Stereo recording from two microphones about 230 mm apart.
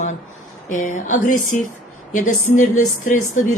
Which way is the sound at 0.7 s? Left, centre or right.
Left.